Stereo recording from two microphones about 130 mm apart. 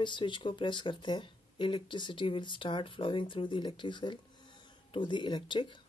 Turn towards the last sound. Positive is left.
turn(degrees=40)  # may be behind; listen again after turning